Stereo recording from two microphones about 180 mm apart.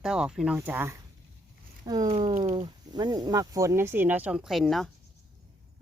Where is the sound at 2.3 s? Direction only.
35° right (ahead or behind).